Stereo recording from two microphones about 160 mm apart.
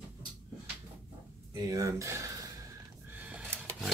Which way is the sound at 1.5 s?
20° right (ahead or behind).